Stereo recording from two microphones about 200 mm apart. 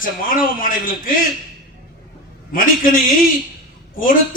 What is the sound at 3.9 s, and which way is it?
Speech, 40° left (ahead or behind).